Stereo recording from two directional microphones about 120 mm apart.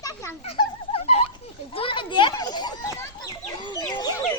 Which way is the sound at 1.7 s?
45° left (ahead or behind).